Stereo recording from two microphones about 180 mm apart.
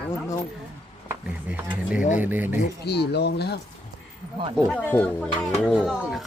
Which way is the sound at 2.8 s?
65° left (ahead or behind).